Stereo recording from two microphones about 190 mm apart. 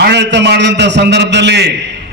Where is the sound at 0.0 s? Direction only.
65° right (ahead or behind).